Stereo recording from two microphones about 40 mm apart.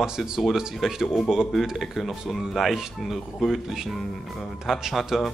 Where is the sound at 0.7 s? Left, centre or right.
Centre.